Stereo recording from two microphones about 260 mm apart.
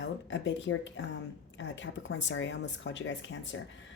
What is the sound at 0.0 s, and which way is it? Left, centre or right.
Speech, left.